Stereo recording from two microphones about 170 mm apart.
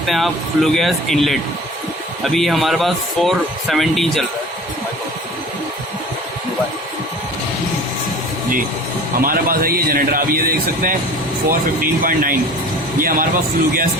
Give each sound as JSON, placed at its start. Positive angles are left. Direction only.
{"t": 0.0, "sound": "speech", "side_deg": 0}
{"t": 9.2, "sound": "a man's voice", "side_deg": -55}